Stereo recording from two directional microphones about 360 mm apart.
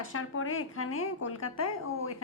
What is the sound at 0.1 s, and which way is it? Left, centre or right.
A woman's voice, left.